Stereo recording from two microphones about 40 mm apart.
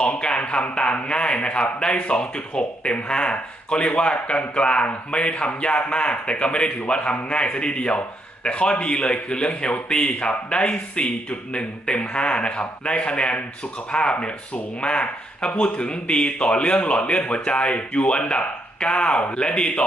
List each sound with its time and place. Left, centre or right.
0.0 s speech: left